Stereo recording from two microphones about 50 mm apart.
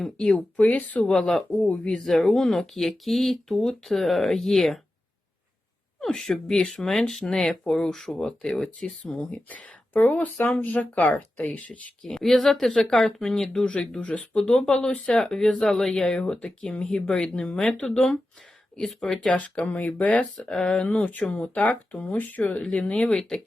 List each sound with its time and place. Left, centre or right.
0.3 s speech: left
1.2 s speech: centre
1.6 s speech: left
2.0 s speech: centre
6.0 s a woman's voice: centre; by 11.8 s left
12.0 s speech: centre
14.0 s speech: left
18.8 s speech: centre
19.3 s speech: left
20.3 s speech: centre